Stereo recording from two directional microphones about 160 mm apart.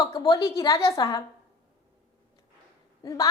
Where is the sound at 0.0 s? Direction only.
20° left (ahead or behind).